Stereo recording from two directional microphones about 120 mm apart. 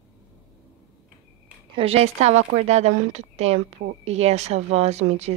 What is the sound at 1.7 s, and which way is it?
Speech, 55° right (ahead or behind).